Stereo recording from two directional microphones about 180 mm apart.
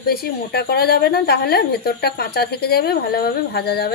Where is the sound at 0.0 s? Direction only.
60° left (ahead or behind).